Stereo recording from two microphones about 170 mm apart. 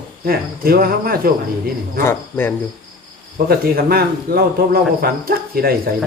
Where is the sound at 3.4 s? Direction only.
65° right (ahead or behind).